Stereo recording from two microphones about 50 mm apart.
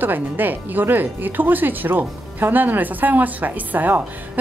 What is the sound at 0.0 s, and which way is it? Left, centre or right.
Speech, right.